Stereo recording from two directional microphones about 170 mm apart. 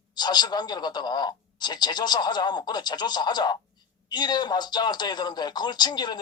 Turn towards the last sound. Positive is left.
turn(degrees=25)  # may be behind; listen again after turning